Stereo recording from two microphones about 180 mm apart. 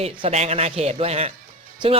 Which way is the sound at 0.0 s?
35° right (ahead or behind).